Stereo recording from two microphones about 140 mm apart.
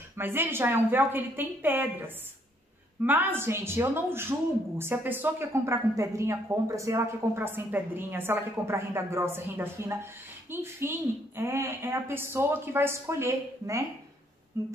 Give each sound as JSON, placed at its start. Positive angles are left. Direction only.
{"t": 0.2, "sound": "a woman's voice", "side_deg": -15}
{"t": 14.5, "sound": "humming", "side_deg": -25}